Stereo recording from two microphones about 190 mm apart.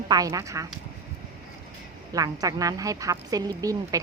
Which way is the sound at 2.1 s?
20° right (ahead or behind).